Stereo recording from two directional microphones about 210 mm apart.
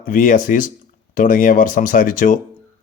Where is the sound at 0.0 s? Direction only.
40° left (ahead or behind).